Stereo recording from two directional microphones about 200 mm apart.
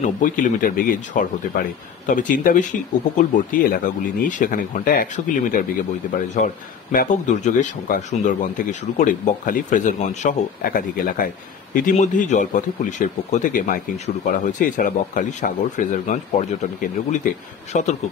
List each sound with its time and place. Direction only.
0.0 s a man's voice: 40° left (ahead or behind)